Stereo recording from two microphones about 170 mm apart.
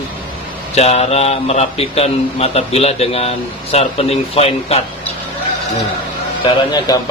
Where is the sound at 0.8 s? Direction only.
40° left (ahead or behind).